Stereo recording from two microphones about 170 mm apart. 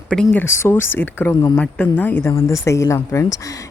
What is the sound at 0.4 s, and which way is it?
A woman's voice, 15° left (ahead or behind).